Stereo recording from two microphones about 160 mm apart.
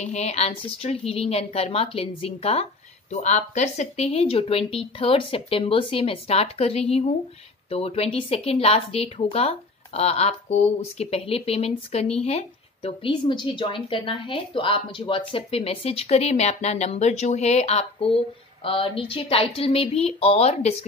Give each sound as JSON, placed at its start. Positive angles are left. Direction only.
{"t": 0.0, "sound": "speech", "side_deg": 45}